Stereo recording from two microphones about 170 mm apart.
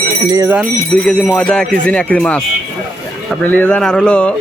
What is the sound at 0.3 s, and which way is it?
Speech, 15° right (ahead or behind).